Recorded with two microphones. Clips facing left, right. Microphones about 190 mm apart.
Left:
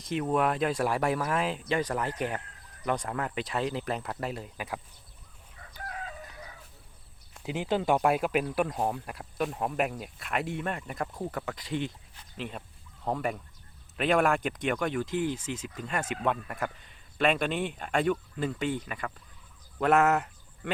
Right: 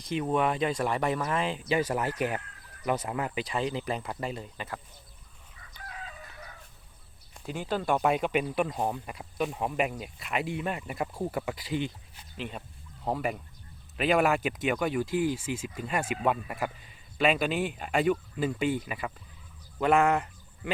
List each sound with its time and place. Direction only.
0.0 s speech: centre (ahead or behind)
5.7 s chicken: 50° left (ahead or behind)
7.4 s a man's voice: 15° left (ahead or behind); by 20.7 s centre (ahead or behind)